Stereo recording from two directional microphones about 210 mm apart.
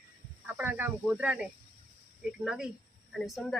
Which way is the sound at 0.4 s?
10° right (ahead or behind).